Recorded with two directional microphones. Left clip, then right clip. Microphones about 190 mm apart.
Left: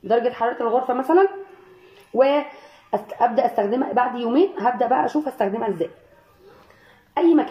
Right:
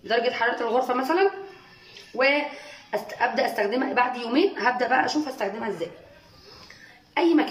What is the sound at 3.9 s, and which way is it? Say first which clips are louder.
Speech: left 3 dB; 20° left (ahead or behind).